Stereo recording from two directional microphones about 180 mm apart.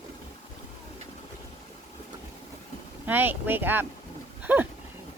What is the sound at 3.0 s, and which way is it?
Speech, 10° right (ahead or behind).